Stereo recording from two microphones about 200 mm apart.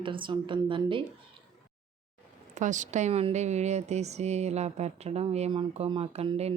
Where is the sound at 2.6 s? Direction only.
35° right (ahead or behind).